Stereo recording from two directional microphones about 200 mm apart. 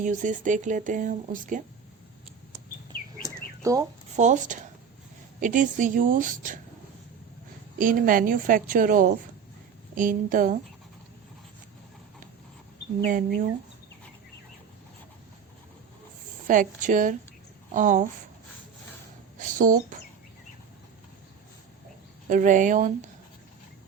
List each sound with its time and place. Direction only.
0.0 s speech: 40° right (ahead or behind)
3.6 s speech: 15° right (ahead or behind)
4.1 s speech: 35° right (ahead or behind)
7.8 s a woman's voice: 45° right (ahead or behind)
13.0 s a woman's voice: 40° right (ahead or behind)
16.5 s speech: 40° right (ahead or behind)
19.4 s speech: 40° right (ahead or behind)
22.3 s speech: 40° right (ahead or behind)